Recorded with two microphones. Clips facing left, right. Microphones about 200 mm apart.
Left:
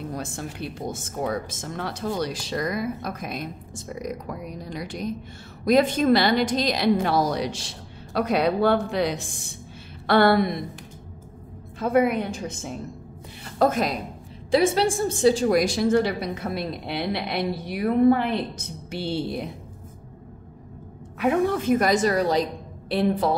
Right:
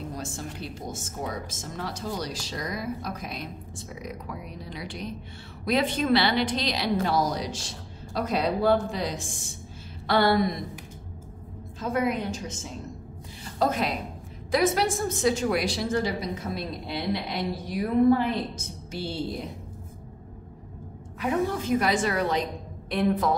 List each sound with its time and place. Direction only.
0.1 s a woman's voice: 60° left (ahead or behind)
11.8 s a woman's voice: 60° left (ahead or behind)
13.4 s music: 50° left (ahead or behind)
14.5 s a woman's voice: 30° left (ahead or behind); by 19.5 s 65° left (ahead or behind)
21.2 s a woman's voice: 60° left (ahead or behind); by 23.3 s 30° left (ahead or behind)